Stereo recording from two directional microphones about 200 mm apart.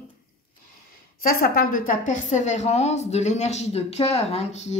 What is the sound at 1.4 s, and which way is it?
Speech, 45° left (ahead or behind).